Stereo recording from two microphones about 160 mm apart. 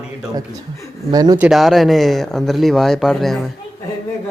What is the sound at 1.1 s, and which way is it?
Speech, 25° right (ahead or behind).